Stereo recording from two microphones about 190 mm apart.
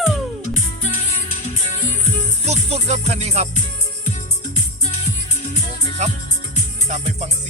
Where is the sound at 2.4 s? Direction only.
35° right (ahead or behind).